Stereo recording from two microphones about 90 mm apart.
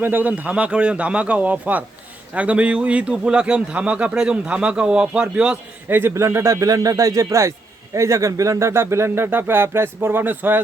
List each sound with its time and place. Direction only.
0.0 s a man's voice: 20° right (ahead or behind)
5.9 s speech: 25° right (ahead or behind)